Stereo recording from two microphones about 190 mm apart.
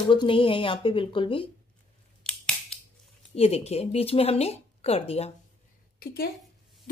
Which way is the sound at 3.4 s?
35° left (ahead or behind).